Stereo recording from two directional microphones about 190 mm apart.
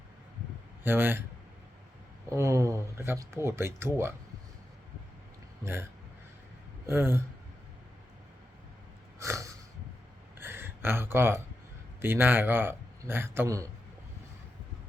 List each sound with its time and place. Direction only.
0.9 s speech: 10° right (ahead or behind)
2.3 s speech: 15° right (ahead or behind)
6.8 s speech: 10° right (ahead or behind)
9.1 s snort: 15° right (ahead or behind)
10.4 s a sound: 10° right (ahead or behind)
12.0 s speech: 10° right (ahead or behind)